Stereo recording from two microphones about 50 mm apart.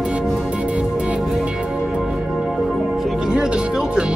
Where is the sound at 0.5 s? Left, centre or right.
Right.